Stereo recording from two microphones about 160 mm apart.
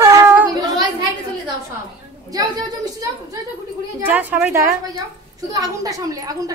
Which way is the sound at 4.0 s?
10° right (ahead or behind).